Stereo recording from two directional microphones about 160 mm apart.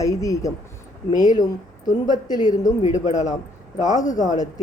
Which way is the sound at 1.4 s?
25° left (ahead or behind).